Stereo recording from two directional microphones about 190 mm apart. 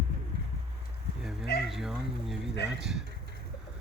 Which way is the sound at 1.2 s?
5° right (ahead or behind).